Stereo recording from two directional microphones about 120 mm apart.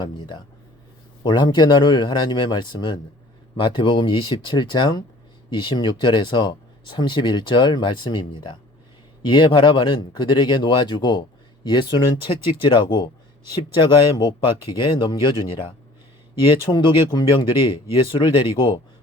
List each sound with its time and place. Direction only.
0.0 s speech: 40° left (ahead or behind)
16.6 s speech: 40° left (ahead or behind)